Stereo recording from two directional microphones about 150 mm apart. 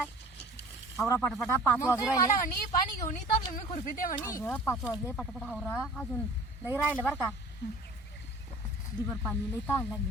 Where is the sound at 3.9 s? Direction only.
65° left (ahead or behind).